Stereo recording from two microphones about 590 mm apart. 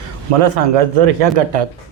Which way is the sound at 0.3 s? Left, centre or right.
Right.